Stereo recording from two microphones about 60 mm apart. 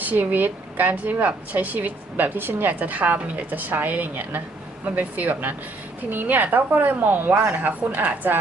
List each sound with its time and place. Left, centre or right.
0.0 s a woman's voice: right